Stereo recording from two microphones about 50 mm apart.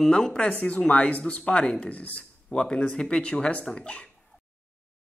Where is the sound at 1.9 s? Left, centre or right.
Left.